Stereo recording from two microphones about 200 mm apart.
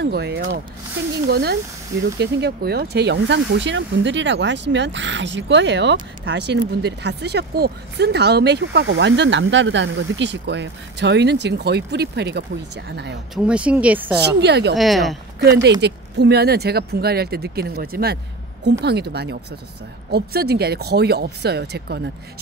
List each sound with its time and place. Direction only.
0.0 s speech: 55° right (ahead or behind)
13.3 s speech: 5° right (ahead or behind)
14.2 s speech: 55° right (ahead or behind)
14.8 s speech: centre (ahead or behind)
15.8 s speech: 55° right (ahead or behind)